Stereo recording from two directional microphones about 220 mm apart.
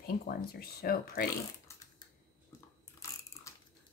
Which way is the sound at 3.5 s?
15° left (ahead or behind).